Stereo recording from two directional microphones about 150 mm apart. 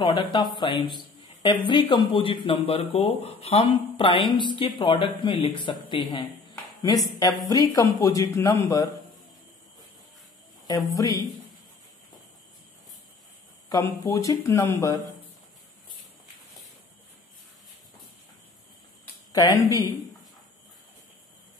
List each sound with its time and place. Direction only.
0.0 s a man's voice: 30° left (ahead or behind)
10.7 s a man's voice: 25° left (ahead or behind)
13.7 s a man's voice: 20° left (ahead or behind)